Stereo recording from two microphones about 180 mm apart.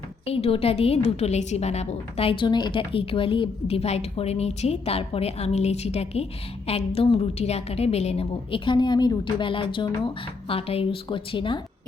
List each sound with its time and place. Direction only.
0.3 s a woman's voice: 35° left (ahead or behind)